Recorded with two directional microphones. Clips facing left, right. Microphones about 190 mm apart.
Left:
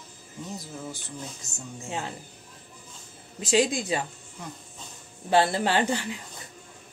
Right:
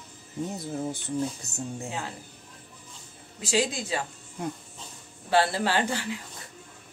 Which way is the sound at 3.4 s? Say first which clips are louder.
Left 4 dB; 20° left (ahead or behind).